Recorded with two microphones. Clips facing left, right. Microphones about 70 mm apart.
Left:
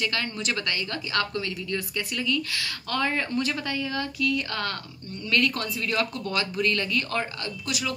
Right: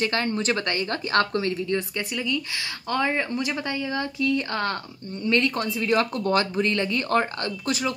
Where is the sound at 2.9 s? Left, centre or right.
Centre.